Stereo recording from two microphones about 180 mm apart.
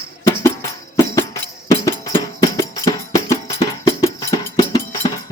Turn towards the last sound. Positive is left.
turn(degrees=20)  # may be behind; listen again after turning